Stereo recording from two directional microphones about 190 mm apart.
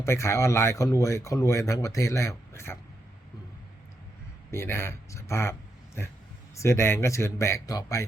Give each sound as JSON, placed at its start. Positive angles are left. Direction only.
{"t": 0.0, "sound": "speech", "side_deg": 15}
{"t": 4.5, "sound": "speech", "side_deg": 10}